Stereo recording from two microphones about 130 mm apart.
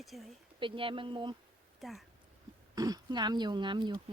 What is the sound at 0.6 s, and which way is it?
Speech, 40° right (ahead or behind).